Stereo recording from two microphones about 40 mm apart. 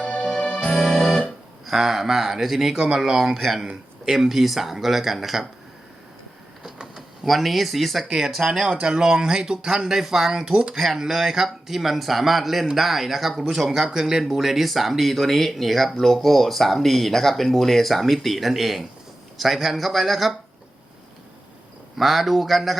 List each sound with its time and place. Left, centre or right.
0.0 s music: left
0.8 s organ: centre
1.6 s speech: centre
6.6 s printer: centre
7.3 s speech: centre
8.0 s speech: centre
10.5 s speech: right
10.8 s speech: centre
21.9 s speech: centre